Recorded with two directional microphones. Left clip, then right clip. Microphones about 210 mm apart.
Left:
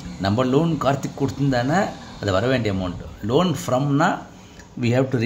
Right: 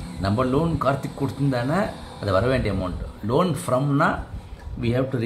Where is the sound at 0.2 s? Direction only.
20° left (ahead or behind).